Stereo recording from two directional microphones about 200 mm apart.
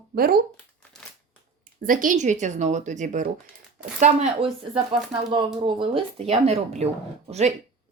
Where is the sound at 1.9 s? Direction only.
40° right (ahead or behind).